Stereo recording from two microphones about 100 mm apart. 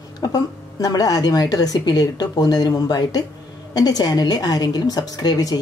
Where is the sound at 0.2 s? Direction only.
40° left (ahead or behind).